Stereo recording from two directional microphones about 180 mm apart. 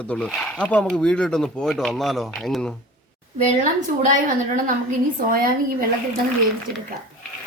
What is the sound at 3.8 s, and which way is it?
Speech, 45° right (ahead or behind).